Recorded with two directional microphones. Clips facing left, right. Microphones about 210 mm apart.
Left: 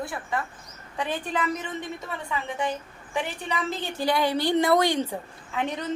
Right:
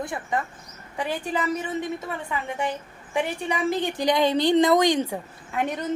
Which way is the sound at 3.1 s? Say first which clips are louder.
Right 4 dB; 15° right (ahead or behind).